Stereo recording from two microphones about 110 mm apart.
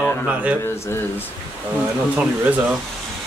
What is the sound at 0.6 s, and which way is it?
Speech, 20° left (ahead or behind).